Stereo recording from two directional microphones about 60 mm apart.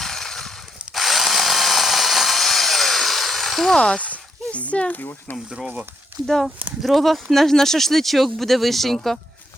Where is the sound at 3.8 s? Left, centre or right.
Centre.